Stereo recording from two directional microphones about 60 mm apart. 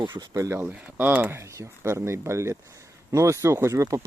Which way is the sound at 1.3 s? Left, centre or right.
Right.